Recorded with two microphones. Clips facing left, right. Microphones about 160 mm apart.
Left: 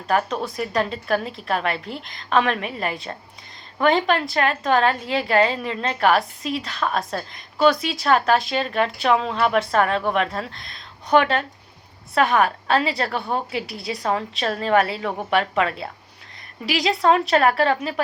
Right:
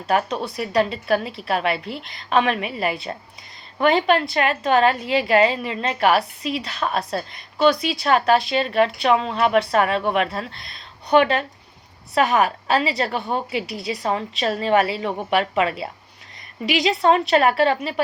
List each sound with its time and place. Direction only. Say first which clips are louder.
0.1 s a woman's voice: right 1 dB; centre (ahead or behind)